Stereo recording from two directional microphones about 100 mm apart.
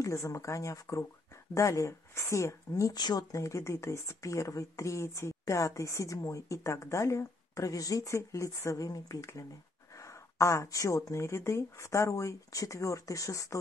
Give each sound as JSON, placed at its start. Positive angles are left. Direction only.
{"t": 0.0, "sound": "speech", "side_deg": 30}